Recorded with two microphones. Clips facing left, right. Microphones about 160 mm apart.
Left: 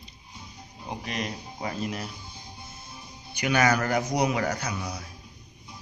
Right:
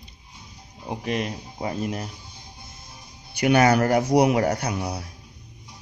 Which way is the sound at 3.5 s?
60° right (ahead or behind).